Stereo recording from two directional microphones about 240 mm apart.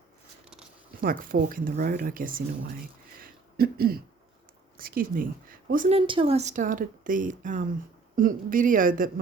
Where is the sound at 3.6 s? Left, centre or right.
Right.